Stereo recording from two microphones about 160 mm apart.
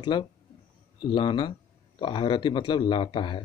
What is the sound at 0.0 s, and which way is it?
Speech, 30° left (ahead or behind).